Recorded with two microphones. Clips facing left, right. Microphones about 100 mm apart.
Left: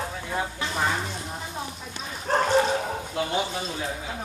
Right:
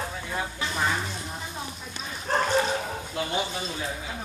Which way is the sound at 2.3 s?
30° left (ahead or behind).